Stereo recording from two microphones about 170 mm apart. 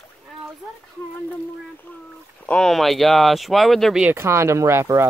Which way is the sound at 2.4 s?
5° left (ahead or behind).